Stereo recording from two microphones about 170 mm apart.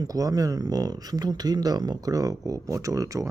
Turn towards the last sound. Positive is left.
turn(degrees=-20)  # may be behind; listen again after turning